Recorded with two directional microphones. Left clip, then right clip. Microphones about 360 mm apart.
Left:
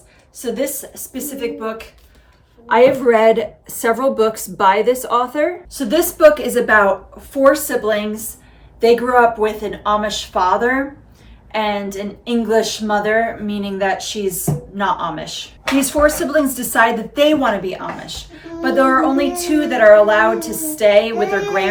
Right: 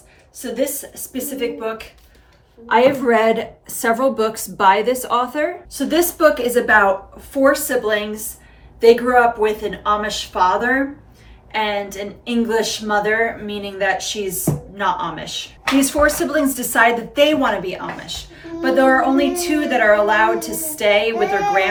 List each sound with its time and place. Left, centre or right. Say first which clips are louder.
0.3 s a woman's voice: left 1 dB; centre